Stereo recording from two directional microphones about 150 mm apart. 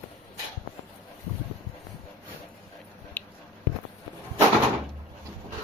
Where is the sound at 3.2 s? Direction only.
15° left (ahead or behind).